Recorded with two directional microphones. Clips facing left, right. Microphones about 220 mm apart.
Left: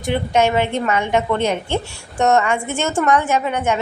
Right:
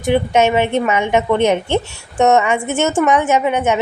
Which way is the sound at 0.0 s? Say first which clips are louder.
Right 3 dB; 15° right (ahead or behind).